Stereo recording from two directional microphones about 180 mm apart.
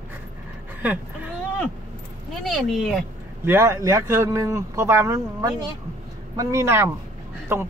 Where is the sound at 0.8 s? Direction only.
10° right (ahead or behind).